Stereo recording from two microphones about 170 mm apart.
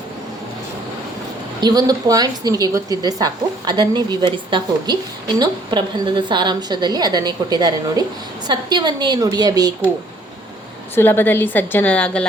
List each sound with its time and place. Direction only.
1.6 s a woman's voice: 20° right (ahead or behind)
10.9 s a woman's voice: 10° left (ahead or behind)